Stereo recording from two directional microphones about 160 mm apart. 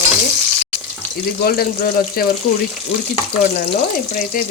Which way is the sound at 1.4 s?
70° left (ahead or behind).